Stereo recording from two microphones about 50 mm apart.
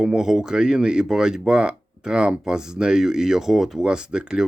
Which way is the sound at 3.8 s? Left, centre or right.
Centre.